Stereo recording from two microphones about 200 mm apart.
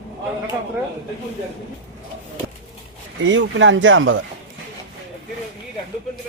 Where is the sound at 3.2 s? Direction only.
70° right (ahead or behind).